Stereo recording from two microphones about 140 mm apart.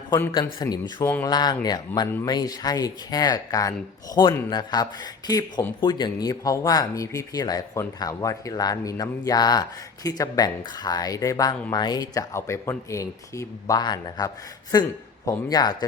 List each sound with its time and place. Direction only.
0.3 s a man's voice: 30° left (ahead or behind)